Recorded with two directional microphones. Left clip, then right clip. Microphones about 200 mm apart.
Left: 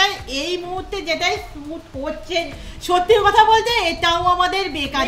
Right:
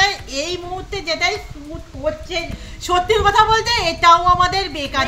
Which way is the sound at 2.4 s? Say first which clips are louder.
Left 2 dB; 10° right (ahead or behind).